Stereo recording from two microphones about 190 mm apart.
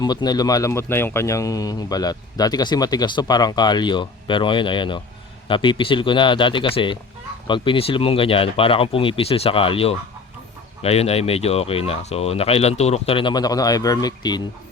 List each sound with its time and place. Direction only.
0.0 s speech: 20° left (ahead or behind)